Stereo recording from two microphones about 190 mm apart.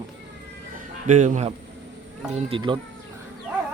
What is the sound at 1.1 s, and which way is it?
Speech, 40° right (ahead or behind).